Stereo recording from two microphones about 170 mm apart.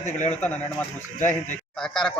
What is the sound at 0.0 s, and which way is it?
Speech, 45° left (ahead or behind).